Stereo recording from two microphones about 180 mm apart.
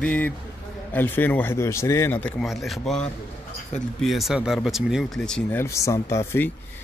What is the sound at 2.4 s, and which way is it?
Speech, centre (ahead or behind).